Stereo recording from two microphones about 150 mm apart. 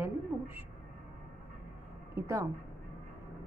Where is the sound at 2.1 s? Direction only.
20° right (ahead or behind).